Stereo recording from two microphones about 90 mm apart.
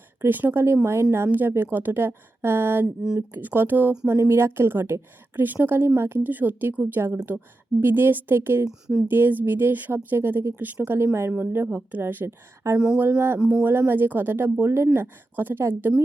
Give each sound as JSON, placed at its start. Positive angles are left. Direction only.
{"t": 0.2, "sound": "speech", "side_deg": -20}
{"t": 13.4, "sound": "speech", "side_deg": -15}
{"t": 13.7, "sound": "speech", "side_deg": -25}